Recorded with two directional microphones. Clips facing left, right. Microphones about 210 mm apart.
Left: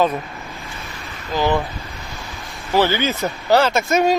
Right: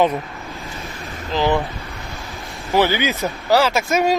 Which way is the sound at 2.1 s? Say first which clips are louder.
Right 1 dB; centre (ahead or behind).